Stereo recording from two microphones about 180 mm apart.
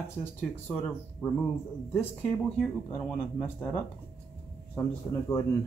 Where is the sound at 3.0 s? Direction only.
10° left (ahead or behind).